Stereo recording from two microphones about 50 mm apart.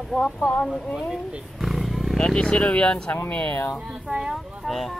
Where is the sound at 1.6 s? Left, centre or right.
Centre.